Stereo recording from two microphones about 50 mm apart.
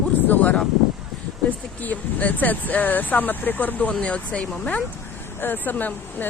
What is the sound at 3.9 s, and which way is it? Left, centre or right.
Speech, left.